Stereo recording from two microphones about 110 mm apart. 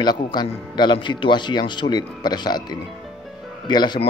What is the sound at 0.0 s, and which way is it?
A man's voice, 40° left (ahead or behind).